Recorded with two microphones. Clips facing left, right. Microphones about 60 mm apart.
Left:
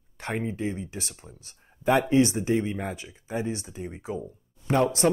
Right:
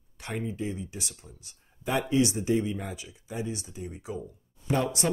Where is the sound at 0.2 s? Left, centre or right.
Left.